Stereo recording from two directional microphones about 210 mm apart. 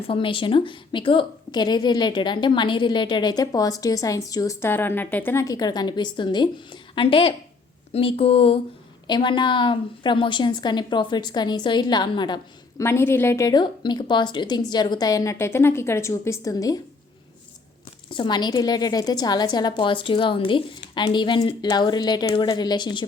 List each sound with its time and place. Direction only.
0.1 s a woman's voice: 25° left (ahead or behind)
18.1 s a woman's voice: 20° left (ahead or behind)